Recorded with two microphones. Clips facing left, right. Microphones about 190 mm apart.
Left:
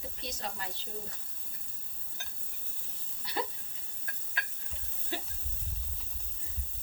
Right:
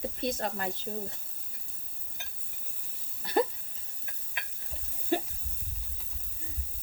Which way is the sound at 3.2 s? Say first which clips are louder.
Right 10 dB; 50° right (ahead or behind).